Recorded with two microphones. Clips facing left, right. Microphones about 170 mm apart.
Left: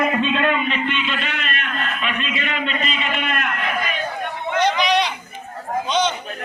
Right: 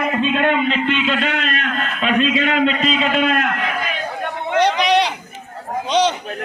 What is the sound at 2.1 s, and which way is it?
A man's voice, 90° right.